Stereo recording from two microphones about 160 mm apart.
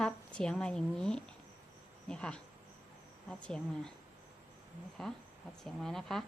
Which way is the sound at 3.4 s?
5° left (ahead or behind).